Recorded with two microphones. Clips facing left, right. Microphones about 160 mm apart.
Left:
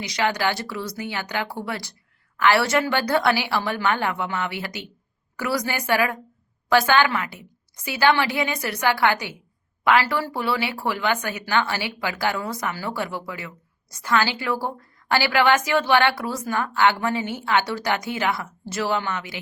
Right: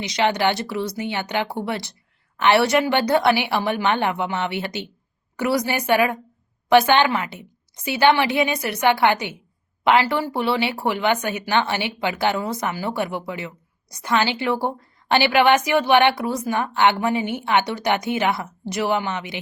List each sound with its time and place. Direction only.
0.0 s a woman's voice: 25° right (ahead or behind)